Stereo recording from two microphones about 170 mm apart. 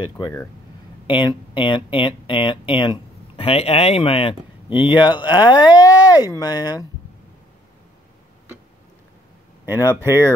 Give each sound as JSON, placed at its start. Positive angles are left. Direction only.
{"t": 0.0, "sound": "speech", "side_deg": 20}
{"t": 9.8, "sound": "speech", "side_deg": -15}